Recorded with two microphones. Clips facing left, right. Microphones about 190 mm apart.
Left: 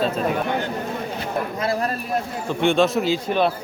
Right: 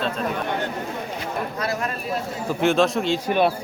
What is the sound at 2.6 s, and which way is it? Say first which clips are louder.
Speech: left 1 dB; centre (ahead or behind).